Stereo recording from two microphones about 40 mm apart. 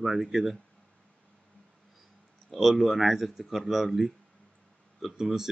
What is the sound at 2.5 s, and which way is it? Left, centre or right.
Speech, centre.